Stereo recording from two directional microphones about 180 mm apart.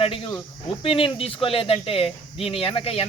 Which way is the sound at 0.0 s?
30° left (ahead or behind).